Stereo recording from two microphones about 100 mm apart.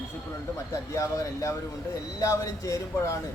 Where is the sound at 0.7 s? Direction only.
30° left (ahead or behind).